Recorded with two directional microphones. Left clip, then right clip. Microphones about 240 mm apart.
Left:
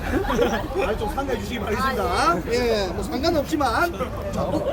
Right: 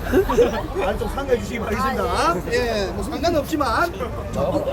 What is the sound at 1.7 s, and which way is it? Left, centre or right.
Speech, centre.